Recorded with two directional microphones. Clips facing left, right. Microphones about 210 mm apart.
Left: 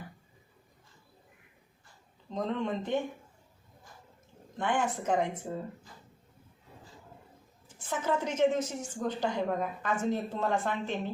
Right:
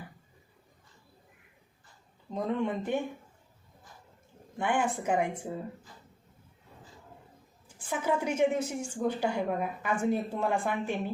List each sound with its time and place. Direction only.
2.3 s a woman's voice: 10° right (ahead or behind)
4.5 s a woman's voice: 10° right (ahead or behind)
7.9 s a woman's voice: 10° right (ahead or behind)